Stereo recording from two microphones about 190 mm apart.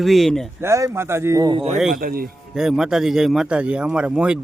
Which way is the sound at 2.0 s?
50° right (ahead or behind).